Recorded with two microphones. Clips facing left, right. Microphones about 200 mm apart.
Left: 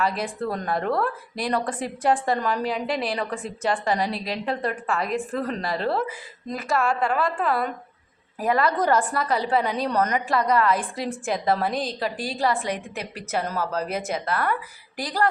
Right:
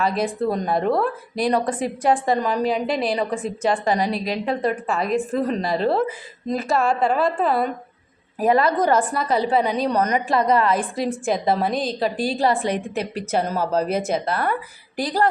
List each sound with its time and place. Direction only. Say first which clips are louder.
0.0 s a woman's voice: right 4 dB; 20° right (ahead or behind)